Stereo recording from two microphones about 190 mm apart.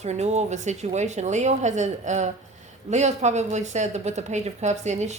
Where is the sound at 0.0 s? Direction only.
35° right (ahead or behind).